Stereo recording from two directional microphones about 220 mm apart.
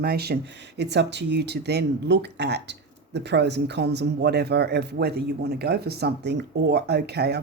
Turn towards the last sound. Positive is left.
turn(degrees=-50)  # may be behind; listen again after turning